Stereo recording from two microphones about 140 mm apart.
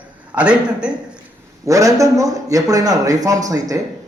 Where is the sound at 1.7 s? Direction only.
25° right (ahead or behind).